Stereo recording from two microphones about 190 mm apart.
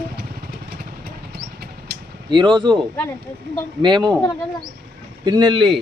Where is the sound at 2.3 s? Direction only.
25° right (ahead or behind).